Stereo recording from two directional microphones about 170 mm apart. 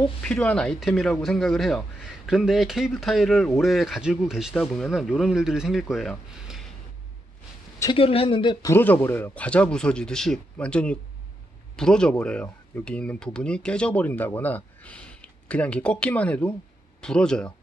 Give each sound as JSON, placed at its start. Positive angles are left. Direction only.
{"t": 0.2, "sound": "speech", "side_deg": 10}
{"t": 7.8, "sound": "speech", "side_deg": 30}
{"t": 8.6, "sound": "speech", "side_deg": 10}